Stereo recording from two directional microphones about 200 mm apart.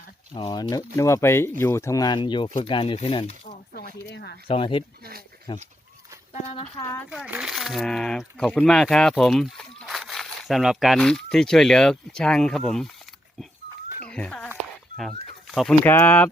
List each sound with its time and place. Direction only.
0.3 s speech: 20° left (ahead or behind)
4.1 s speech: 55° left (ahead or behind)
4.4 s speech: 25° left (ahead or behind)
7.1 s speech: 5° right (ahead or behind)
14.1 s a sound: 5° left (ahead or behind)
14.9 s speech: centre (ahead or behind)